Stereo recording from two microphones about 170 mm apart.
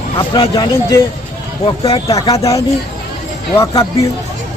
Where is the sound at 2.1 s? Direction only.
20° left (ahead or behind).